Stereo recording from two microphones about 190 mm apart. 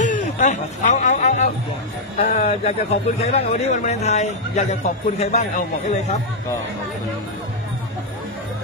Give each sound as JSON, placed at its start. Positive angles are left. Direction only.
{"t": 0.0, "sound": "a man's voice", "side_deg": 40}